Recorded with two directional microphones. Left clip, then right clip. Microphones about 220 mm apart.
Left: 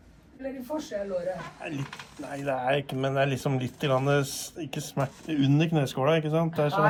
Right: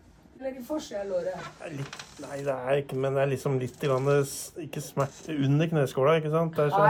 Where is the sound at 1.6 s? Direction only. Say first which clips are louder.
Left 2 dB; centre (ahead or behind).